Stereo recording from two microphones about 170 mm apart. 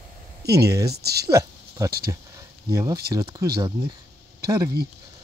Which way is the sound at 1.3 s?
20° right (ahead or behind).